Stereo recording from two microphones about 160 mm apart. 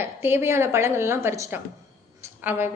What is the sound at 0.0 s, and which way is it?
A woman's voice, 15° right (ahead or behind).